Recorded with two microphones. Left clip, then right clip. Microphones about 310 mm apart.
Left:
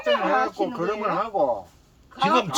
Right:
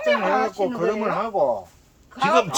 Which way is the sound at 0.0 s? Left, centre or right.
Right.